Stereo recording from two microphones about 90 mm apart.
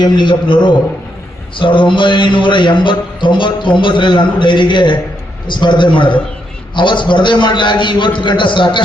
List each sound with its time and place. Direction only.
0.0 s a man's voice: 55° left (ahead or behind)